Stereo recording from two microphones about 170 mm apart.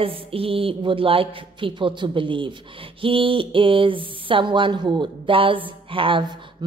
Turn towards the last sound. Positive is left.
turn(degrees=-30)  # may be behind; listen again after turning